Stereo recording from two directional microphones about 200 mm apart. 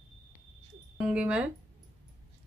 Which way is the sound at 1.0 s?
5° right (ahead or behind).